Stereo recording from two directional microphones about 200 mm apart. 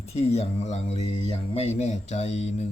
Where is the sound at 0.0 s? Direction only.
30° left (ahead or behind).